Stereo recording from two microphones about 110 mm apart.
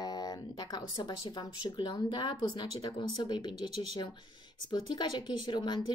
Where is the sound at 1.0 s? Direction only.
45° left (ahead or behind).